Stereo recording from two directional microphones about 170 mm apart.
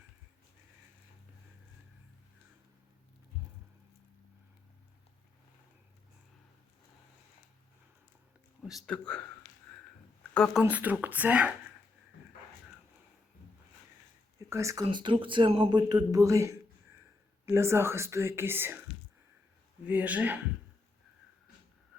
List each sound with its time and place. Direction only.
8.9 s a man's voice: 10° left (ahead or behind)
10.3 s speech: 5° left (ahead or behind)
10.6 s speech: 10° right (ahead or behind)
14.3 s speech: 20° right (ahead or behind)
14.8 s a man's voice: 30° right (ahead or behind); by 20.4 s 10° right (ahead or behind)